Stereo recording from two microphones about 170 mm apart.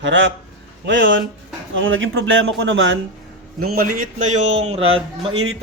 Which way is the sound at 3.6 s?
60° right (ahead or behind).